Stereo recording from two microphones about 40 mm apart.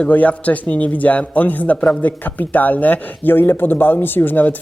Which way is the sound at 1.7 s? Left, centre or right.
Left.